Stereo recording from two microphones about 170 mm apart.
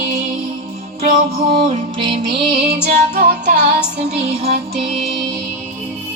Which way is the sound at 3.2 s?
70° right (ahead or behind).